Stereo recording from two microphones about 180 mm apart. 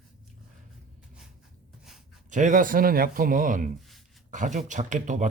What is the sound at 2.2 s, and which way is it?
A man's voice, 45° right (ahead or behind).